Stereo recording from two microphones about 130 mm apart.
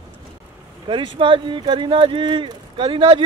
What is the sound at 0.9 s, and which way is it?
Speech, 40° right (ahead or behind).